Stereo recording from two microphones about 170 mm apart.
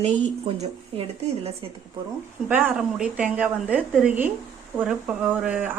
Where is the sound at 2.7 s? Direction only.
5° right (ahead or behind).